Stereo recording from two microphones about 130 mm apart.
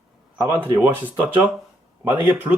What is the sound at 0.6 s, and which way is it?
A man's voice, 15° right (ahead or behind).